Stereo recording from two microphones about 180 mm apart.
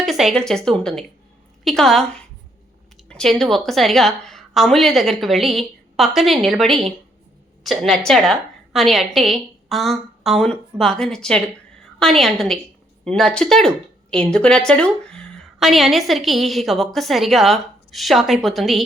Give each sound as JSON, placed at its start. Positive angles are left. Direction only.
{"t": 0.0, "sound": "speech", "side_deg": 0}
{"t": 3.1, "sound": "speech", "side_deg": 5}